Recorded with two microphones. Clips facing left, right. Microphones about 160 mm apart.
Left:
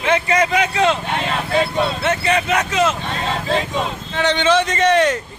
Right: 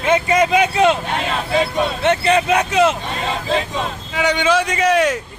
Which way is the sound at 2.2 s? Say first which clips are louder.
Right 2 dB; 30° right (ahead or behind).